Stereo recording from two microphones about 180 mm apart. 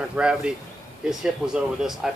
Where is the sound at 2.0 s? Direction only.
Centre (ahead or behind).